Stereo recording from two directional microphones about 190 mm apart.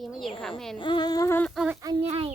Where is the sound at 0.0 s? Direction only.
Centre (ahead or behind).